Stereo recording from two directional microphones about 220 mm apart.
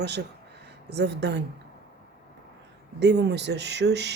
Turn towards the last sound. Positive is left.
turn(degrees=-50)  # may be behind; listen again after turning